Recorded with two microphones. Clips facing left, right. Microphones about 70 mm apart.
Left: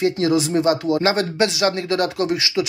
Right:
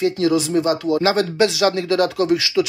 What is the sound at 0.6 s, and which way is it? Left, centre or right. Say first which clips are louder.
Speech: even; centre.